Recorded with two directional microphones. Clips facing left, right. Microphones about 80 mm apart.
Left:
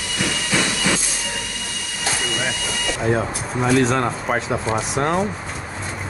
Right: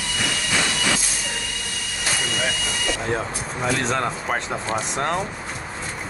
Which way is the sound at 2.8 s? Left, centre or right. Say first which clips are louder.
Left 5 dB; centre.